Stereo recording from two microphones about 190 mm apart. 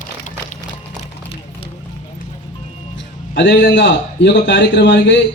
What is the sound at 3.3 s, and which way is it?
A man's voice, 70° left (ahead or behind).